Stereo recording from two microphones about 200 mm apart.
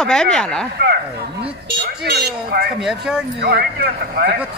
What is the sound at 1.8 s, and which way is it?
Speech, 55° right (ahead or behind).